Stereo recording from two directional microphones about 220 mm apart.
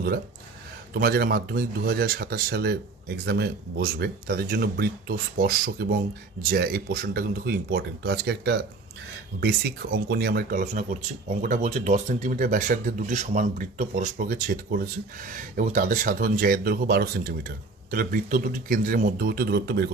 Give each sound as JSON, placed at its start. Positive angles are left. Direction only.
{"t": 0.9, "sound": "speech", "side_deg": -45}